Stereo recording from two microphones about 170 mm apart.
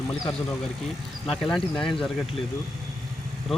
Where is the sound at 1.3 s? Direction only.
Centre (ahead or behind).